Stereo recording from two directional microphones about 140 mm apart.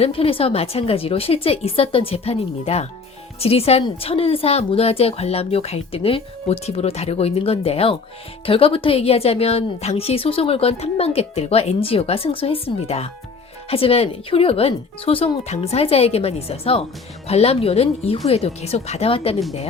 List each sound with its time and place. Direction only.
0.0 s a woman's voice: 40° left (ahead or behind)